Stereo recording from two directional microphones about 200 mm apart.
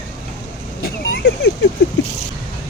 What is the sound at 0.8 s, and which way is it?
Vehicle, 50° left (ahead or behind).